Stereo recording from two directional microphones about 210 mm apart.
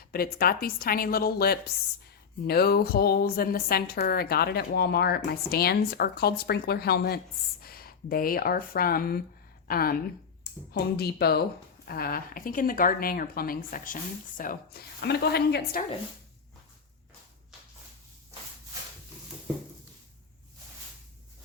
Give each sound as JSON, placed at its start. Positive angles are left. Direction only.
{"t": 0.0, "sound": "a woman's voice", "side_deg": 45}